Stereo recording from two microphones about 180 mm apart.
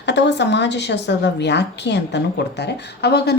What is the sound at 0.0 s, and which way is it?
A woman's voice, 75° left (ahead or behind).